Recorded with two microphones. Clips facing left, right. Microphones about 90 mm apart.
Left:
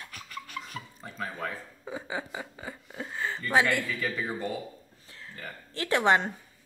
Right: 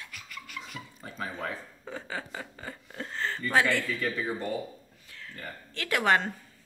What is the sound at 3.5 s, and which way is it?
Speech, 15° left (ahead or behind).